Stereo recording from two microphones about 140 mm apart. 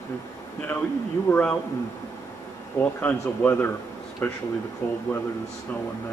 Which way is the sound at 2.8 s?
10° left (ahead or behind).